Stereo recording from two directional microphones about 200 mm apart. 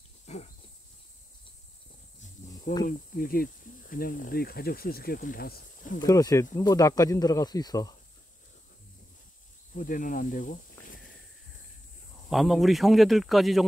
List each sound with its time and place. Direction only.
0.3 s a sound: 35° left (ahead or behind)
2.8 s speech: 45° left (ahead or behind)
5.9 s speech: 20° left (ahead or behind)
9.8 s speech: 40° left (ahead or behind)
12.3 s speech: centre (ahead or behind)